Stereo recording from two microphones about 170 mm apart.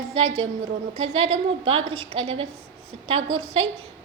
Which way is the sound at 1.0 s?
35° right (ahead or behind).